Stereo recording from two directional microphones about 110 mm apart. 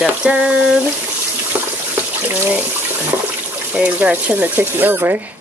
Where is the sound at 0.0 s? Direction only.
10° right (ahead or behind).